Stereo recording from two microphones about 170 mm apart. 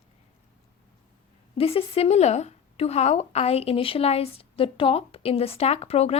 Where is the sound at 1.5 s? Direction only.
35° left (ahead or behind).